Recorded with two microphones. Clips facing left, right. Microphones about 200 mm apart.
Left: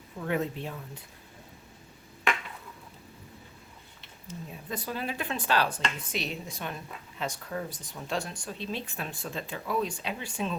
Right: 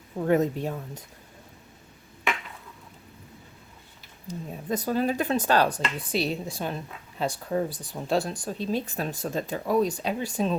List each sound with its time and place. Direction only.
0.2 s speech: 40° right (ahead or behind)
4.3 s speech: 40° right (ahead or behind)